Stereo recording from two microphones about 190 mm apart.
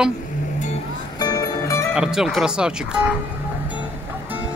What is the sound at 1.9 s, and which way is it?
Speech, 5° right (ahead or behind).